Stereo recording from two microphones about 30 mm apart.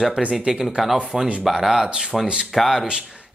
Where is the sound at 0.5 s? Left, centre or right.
Centre.